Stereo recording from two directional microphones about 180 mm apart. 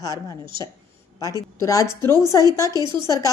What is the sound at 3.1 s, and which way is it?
Speech, 20° left (ahead or behind).